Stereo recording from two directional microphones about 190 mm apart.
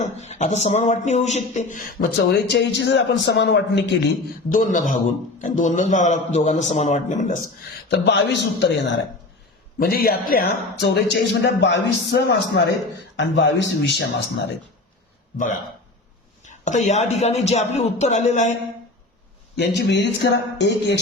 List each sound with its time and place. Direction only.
0.2 s a man's voice: 40° left (ahead or behind)
2.1 s speech: 65° left (ahead or behind)
4.5 s a man's voice: 40° left (ahead or behind)
7.9 s speech: 65° left (ahead or behind)
9.7 s speech: 50° left (ahead or behind)
16.4 s a man's voice: 40° left (ahead or behind)
19.5 s speech: 65° left (ahead or behind)